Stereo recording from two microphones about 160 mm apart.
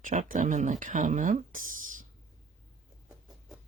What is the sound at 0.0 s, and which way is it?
Speech, 55° right (ahead or behind).